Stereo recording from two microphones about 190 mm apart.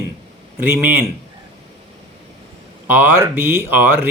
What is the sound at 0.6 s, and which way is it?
Speech, 10° right (ahead or behind).